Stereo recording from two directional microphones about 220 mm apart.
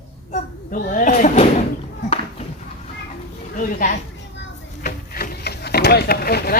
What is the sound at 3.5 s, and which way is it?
Speech, 35° left (ahead or behind).